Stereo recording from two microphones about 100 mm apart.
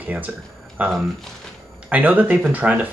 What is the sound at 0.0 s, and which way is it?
Speech, 15° right (ahead or behind).